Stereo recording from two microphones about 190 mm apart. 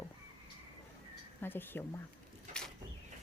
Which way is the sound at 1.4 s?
10° left (ahead or behind).